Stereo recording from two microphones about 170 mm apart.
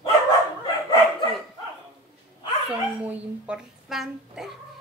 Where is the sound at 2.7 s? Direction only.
5° right (ahead or behind).